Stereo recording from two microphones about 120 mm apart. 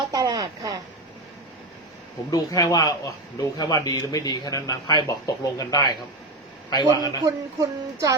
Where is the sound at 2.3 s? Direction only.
30° left (ahead or behind).